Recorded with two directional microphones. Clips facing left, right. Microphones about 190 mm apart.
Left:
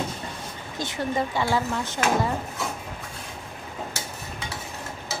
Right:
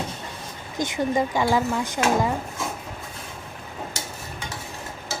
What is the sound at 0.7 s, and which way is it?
Speech, 15° right (ahead or behind).